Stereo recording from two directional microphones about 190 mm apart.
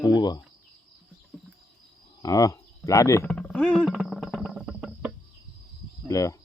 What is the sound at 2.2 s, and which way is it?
Speech, 20° left (ahead or behind).